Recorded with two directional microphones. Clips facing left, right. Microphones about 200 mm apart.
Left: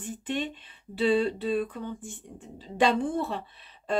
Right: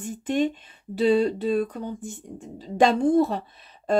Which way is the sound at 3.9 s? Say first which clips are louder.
Right 6 dB; 40° right (ahead or behind).